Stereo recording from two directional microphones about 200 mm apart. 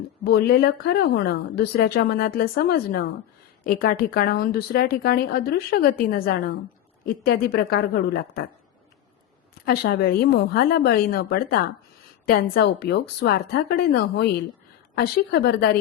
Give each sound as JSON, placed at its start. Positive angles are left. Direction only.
{"t": 0.3, "sound": "a woman's voice", "side_deg": 50}
{"t": 9.6, "sound": "a woman's voice", "side_deg": 50}